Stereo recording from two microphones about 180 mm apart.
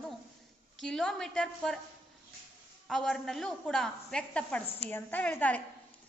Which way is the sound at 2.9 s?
Centre (ahead or behind).